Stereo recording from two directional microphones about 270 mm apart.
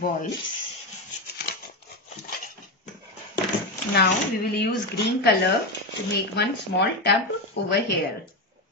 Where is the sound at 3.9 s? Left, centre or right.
Left.